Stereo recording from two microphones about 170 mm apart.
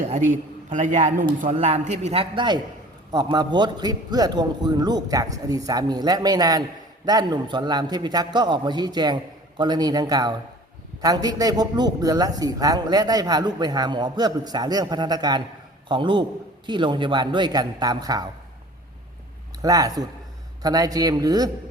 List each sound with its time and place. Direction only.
0.1 s a man's voice: 45° right (ahead or behind); by 18.3 s 20° right (ahead or behind)
19.6 s a man's voice: 20° right (ahead or behind)